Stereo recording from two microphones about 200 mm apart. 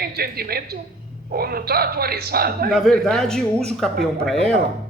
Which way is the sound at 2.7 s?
Centre (ahead or behind).